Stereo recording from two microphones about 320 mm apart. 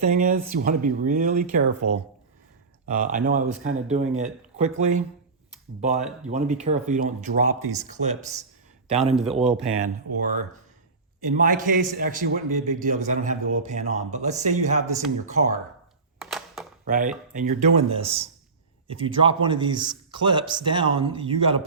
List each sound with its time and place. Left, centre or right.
0.0 s a man's voice: right
9.1 s speech: centre
9.6 s a man's voice: centre
11.3 s a man's voice: right
16.2 s a sound: centre
16.8 s a man's voice: right